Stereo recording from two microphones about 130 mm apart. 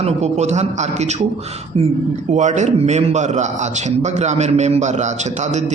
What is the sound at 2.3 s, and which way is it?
A man's voice, 65° right (ahead or behind).